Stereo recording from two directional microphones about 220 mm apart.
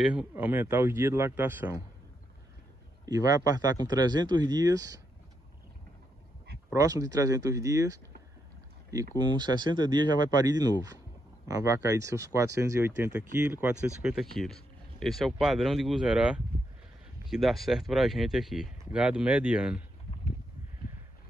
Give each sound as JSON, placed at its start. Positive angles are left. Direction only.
{"t": 0.1, "sound": "speech", "side_deg": -5}
{"t": 3.1, "sound": "speech", "side_deg": -15}
{"t": 6.7, "sound": "speech", "side_deg": -15}
{"t": 9.3, "sound": "speech", "side_deg": -20}